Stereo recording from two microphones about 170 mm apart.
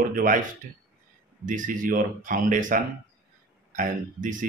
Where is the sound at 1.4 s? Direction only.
50° right (ahead or behind).